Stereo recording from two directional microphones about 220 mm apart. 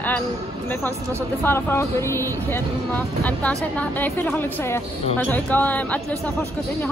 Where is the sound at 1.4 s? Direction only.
10° left (ahead or behind).